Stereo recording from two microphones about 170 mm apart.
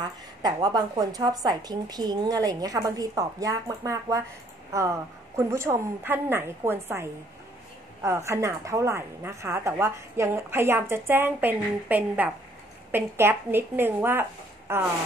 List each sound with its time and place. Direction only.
0.4 s a woman's voice: 20° right (ahead or behind)